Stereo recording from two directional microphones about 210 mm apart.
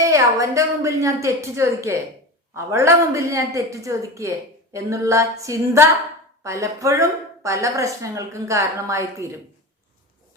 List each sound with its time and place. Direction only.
0.0 s a man's voice: 15° right (ahead or behind)